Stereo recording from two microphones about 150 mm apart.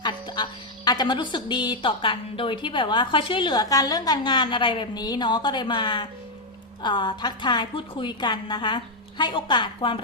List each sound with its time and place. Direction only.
0.0 s music: 30° left (ahead or behind)
0.9 s a woman's voice: 30° left (ahead or behind)